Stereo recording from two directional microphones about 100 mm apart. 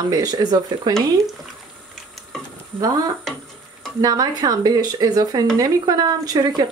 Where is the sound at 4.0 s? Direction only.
40° right (ahead or behind).